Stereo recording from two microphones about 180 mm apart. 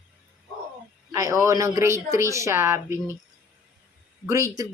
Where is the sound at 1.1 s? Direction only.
15° right (ahead or behind).